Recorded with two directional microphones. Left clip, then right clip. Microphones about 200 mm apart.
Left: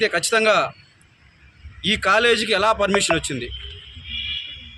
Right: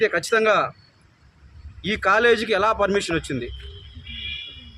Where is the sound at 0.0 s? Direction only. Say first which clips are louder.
Left 1 dB; 5° right (ahead or behind).